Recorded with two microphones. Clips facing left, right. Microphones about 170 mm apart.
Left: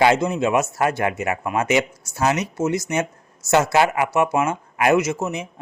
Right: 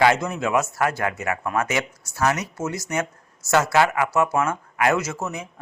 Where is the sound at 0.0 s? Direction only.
20° left (ahead or behind).